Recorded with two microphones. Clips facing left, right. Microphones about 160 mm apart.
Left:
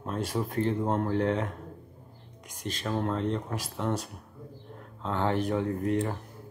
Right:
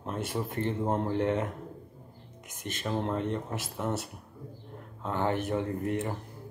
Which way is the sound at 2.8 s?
15° right (ahead or behind).